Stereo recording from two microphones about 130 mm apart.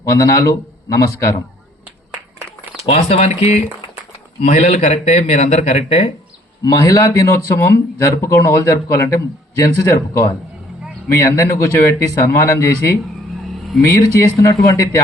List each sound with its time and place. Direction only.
0.2 s speech: 25° left (ahead or behind)
2.8 s speech: 55° left (ahead or behind)
6.7 s speech: 30° left (ahead or behind)
11.1 s speech: 25° left (ahead or behind)